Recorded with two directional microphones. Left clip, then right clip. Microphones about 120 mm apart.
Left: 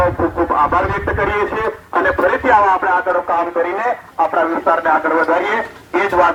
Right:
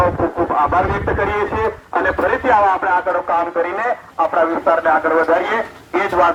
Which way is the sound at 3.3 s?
Centre (ahead or behind).